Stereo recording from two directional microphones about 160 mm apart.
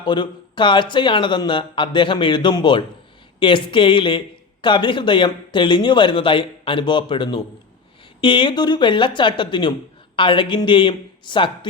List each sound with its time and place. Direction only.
0.0 s speech: 30° left (ahead or behind)